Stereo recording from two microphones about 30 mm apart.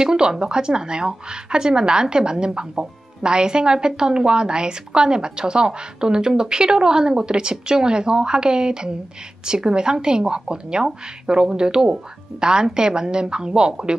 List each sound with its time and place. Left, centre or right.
0.0 s a woman's voice: right